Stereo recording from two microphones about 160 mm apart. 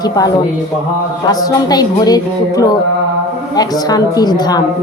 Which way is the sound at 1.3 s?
25° left (ahead or behind).